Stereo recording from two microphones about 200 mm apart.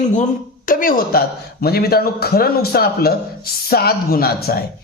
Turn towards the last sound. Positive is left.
turn(degrees=50)  # may be behind; listen again after turning